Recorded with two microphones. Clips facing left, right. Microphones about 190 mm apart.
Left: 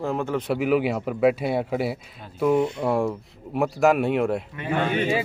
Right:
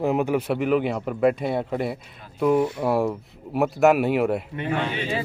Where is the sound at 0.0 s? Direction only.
15° right (ahead or behind).